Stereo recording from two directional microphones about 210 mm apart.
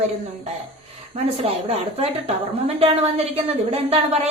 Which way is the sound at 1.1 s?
30° right (ahead or behind).